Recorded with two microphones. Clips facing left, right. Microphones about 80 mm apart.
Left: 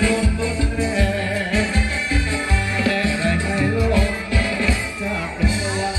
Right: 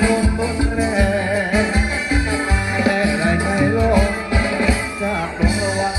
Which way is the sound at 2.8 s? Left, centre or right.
Right.